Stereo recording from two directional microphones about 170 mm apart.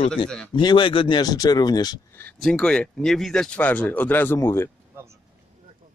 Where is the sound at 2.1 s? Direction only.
5° left (ahead or behind).